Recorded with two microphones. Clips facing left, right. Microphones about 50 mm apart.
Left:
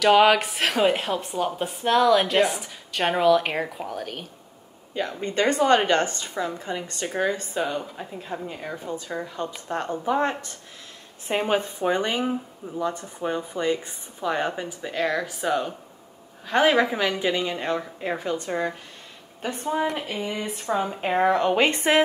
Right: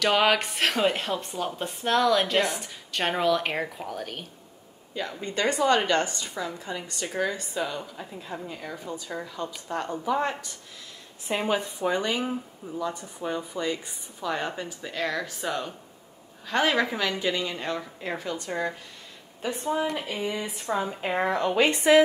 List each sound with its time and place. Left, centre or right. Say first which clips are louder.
0.0 s a woman's voice: left 5 dB; centre
4.9 s a woman's voice: left 5 dB; left
14.3 s speech: left 4 dB; left
20.6 s a woman's voice: left 3 dB; left